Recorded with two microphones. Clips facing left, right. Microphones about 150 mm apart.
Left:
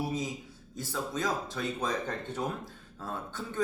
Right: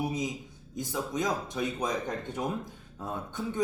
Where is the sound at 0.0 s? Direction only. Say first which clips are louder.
Right 2 dB; 15° right (ahead or behind).